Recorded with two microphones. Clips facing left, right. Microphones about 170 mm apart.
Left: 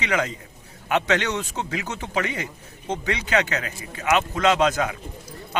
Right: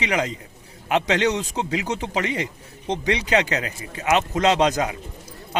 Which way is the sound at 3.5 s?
35° right (ahead or behind).